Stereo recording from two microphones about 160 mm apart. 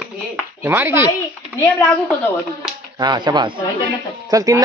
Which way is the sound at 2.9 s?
25° right (ahead or behind).